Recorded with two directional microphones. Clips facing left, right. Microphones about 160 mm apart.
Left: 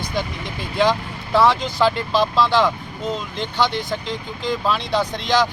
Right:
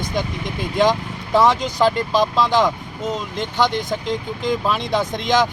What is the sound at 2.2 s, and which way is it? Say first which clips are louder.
Speech: left 2 dB; 15° right (ahead or behind).